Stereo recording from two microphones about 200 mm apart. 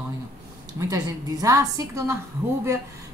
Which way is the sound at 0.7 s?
20° right (ahead or behind).